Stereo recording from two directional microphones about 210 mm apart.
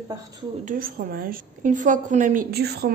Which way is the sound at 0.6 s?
40° right (ahead or behind).